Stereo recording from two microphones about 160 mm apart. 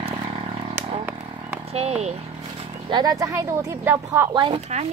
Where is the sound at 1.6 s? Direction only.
40° right (ahead or behind).